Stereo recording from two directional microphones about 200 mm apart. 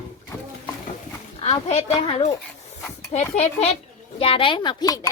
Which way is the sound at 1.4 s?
30° left (ahead or behind).